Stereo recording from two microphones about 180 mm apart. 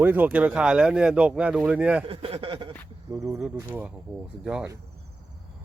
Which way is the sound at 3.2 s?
Centre (ahead or behind).